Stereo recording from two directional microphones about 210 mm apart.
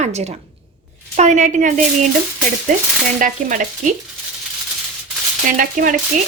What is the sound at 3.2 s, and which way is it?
Speech, 40° right (ahead or behind).